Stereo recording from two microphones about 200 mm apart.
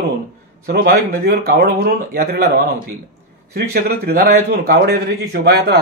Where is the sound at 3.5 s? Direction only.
50° right (ahead or behind).